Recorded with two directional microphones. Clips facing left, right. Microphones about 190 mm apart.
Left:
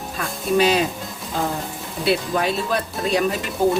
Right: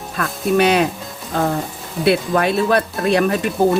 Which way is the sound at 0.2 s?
60° right (ahead or behind).